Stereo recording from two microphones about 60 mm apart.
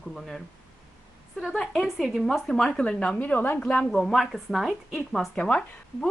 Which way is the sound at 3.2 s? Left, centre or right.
Left.